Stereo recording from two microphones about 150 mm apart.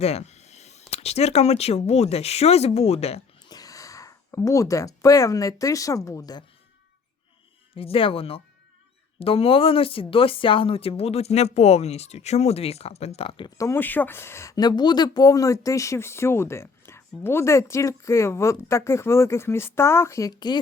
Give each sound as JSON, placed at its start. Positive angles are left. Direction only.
{"t": 0.0, "sound": "speech", "side_deg": 45}
{"t": 3.5, "sound": "speech", "side_deg": 25}
{"t": 7.8, "sound": "speech", "side_deg": 40}
{"t": 13.6, "sound": "speech", "side_deg": 15}